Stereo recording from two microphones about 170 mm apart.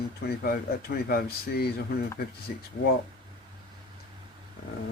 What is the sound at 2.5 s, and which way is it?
Speech, 55° left (ahead or behind).